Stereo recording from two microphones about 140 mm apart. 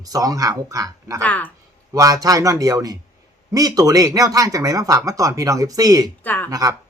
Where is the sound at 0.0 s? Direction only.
25° right (ahead or behind).